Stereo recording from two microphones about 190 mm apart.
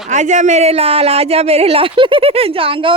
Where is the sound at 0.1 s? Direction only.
40° right (ahead or behind).